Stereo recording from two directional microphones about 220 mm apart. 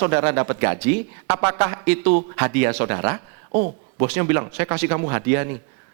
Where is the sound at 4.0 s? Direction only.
15° right (ahead or behind).